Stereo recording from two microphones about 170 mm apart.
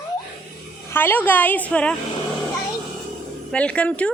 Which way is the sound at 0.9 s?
10° left (ahead or behind).